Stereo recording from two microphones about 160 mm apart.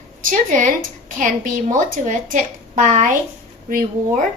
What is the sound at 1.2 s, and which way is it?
Speech, 55° right (ahead or behind).